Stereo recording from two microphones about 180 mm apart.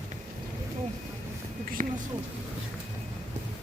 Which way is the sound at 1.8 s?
45° right (ahead or behind).